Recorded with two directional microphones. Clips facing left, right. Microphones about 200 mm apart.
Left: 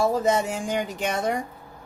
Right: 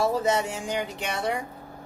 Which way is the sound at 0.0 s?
50° left (ahead or behind).